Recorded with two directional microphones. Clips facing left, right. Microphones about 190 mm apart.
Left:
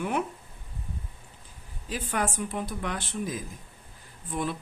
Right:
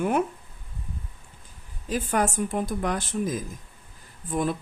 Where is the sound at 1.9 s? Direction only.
45° right (ahead or behind).